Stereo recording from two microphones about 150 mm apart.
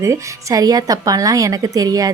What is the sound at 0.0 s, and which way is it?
A woman's voice, 20° right (ahead or behind).